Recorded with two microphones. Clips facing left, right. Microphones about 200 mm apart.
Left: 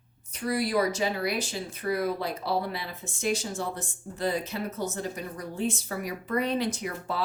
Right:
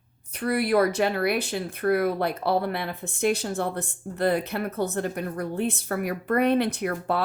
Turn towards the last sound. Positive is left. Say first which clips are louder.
# right 6 dB
turn(degrees=-60)  # may be behind; listen again after turning